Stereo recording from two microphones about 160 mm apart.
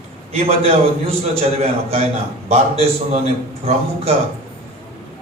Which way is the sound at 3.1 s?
40° right (ahead or behind).